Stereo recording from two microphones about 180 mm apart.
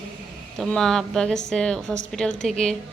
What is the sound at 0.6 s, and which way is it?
A woman's voice, 5° left (ahead or behind).